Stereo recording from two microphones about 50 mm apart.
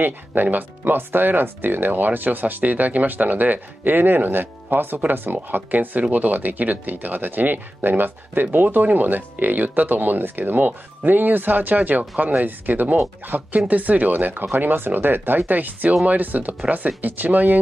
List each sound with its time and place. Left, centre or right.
0.0 s speech: right